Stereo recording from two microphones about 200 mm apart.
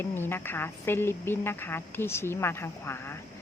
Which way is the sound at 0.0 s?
10° left (ahead or behind).